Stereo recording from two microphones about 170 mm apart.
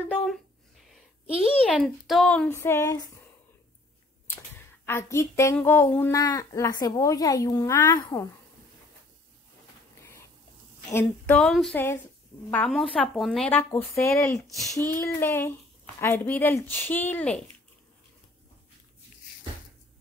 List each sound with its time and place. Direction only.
0.1 s a sound: 5° left (ahead or behind)
1.4 s speech: centre (ahead or behind); by 3.1 s 15° left (ahead or behind)
4.8 s speech: 15° left (ahead or behind)
10.9 s speech: 15° left (ahead or behind)
11.3 s a woman's voice: centre (ahead or behind)